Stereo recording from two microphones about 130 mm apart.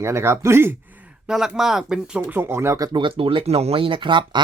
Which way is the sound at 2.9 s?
40° right (ahead or behind).